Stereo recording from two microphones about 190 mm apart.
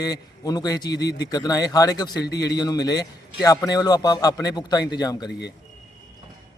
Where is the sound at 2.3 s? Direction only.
60° left (ahead or behind).